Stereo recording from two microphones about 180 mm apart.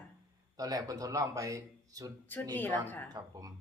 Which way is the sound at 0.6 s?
20° right (ahead or behind).